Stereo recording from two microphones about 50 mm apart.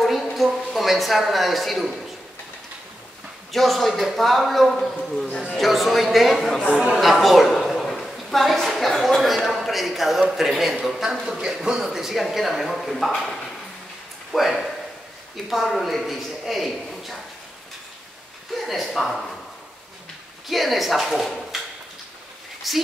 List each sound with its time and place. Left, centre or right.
0.0 s a sound: centre
0.7 s speech: centre
3.5 s speech: centre
6.7 s a woman's voice: right
7.0 s a woman's voice: centre
10.8 s a man's voice: centre
14.3 s speech: centre
18.7 s speech: centre
20.4 s speech: centre
22.7 s speech: centre